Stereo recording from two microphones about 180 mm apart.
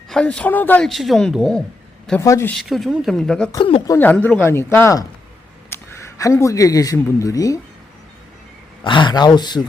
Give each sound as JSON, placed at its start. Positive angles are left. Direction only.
{"t": 0.1, "sound": "a man's voice", "side_deg": 5}
{"t": 2.2, "sound": "speech", "side_deg": 15}
{"t": 2.6, "sound": "a man's voice", "side_deg": 0}
{"t": 3.5, "sound": "speech", "side_deg": 30}
{"t": 3.9, "sound": "speech", "side_deg": 10}
{"t": 8.8, "sound": "speech", "side_deg": 25}